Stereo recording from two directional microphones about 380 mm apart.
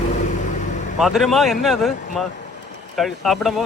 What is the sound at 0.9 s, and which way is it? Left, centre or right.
Speech, centre.